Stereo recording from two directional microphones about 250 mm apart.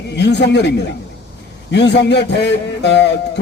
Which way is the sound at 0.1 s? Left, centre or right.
Left.